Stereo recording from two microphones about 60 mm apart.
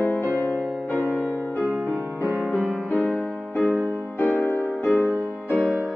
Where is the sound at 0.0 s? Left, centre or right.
Left.